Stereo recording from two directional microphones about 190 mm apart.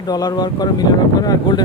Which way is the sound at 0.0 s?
20° left (ahead or behind).